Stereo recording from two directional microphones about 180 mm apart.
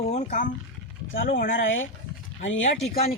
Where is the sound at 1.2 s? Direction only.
55° left (ahead or behind).